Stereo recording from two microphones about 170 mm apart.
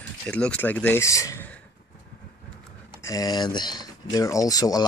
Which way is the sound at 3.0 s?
20° left (ahead or behind).